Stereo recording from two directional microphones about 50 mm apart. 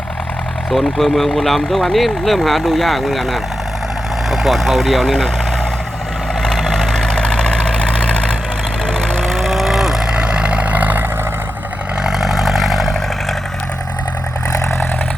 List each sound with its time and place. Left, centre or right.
0.7 s speech: centre
6.4 s vehicle: centre
10.2 s vehicle: centre
12.0 s vehicle: centre